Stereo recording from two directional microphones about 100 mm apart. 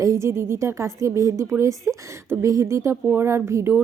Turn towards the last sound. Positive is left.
turn(degrees=-25)  # may be behind; listen again after turning